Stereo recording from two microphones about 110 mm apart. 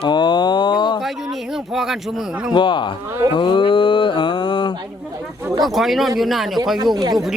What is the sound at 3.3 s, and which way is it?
Mantra, 50° left (ahead or behind).